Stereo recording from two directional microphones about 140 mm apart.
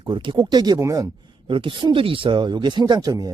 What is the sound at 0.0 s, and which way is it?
Speech, 35° right (ahead or behind).